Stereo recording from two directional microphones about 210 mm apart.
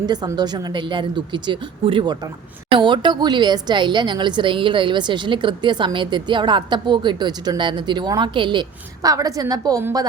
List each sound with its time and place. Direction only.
0.0 s speech: 20° right (ahead or behind)